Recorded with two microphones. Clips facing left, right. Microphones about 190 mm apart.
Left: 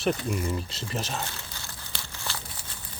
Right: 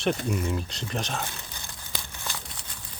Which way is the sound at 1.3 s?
15° right (ahead or behind).